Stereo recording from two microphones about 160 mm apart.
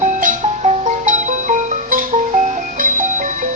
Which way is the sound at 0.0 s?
55° right (ahead or behind).